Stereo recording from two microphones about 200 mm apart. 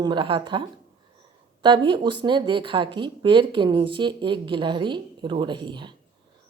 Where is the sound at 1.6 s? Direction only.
25° right (ahead or behind).